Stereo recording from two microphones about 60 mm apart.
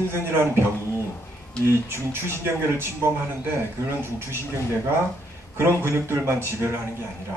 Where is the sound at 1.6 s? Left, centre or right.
Right.